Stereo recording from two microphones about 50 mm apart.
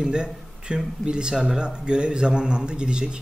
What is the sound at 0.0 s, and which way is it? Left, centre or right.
Speech, centre.